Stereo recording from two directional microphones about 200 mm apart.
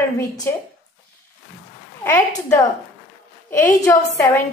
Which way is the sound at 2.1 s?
10° left (ahead or behind).